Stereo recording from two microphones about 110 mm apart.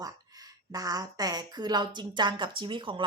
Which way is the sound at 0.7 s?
35° right (ahead or behind).